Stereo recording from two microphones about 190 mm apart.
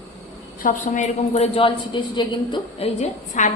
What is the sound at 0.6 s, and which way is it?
A woman's voice, 40° left (ahead or behind).